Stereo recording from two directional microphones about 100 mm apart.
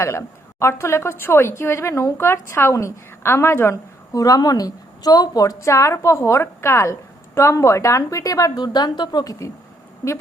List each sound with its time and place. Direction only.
0.0 s a woman's voice: 25° left (ahead or behind)
4.1 s a woman's voice: 35° left (ahead or behind)